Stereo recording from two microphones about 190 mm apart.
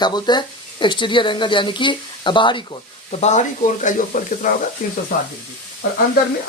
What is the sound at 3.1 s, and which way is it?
Speech, 35° left (ahead or behind).